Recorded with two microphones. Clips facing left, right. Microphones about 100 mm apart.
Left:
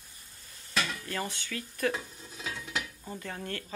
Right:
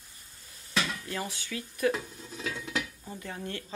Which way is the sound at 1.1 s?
10° right (ahead or behind).